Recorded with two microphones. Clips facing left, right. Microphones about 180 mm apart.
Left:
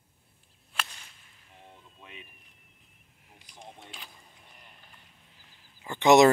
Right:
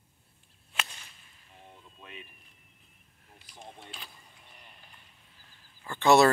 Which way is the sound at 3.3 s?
15° left (ahead or behind).